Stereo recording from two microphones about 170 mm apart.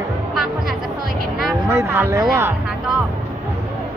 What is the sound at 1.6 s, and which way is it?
Speech, 15° right (ahead or behind).